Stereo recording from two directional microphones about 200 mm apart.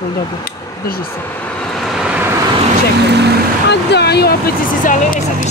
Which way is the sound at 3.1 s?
60° right (ahead or behind).